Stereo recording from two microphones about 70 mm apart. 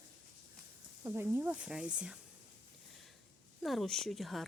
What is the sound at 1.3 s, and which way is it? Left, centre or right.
Speech, right.